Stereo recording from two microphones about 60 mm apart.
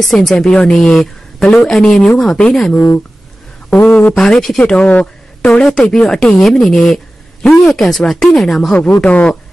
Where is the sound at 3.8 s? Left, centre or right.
Left.